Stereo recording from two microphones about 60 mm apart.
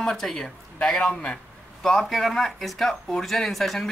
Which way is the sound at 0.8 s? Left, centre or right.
Centre.